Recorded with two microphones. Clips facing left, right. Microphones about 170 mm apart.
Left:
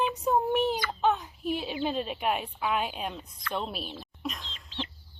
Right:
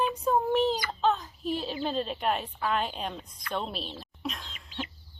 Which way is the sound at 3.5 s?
5° left (ahead or behind).